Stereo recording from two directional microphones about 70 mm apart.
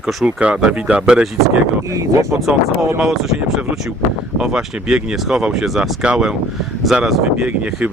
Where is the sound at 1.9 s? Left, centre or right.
Right.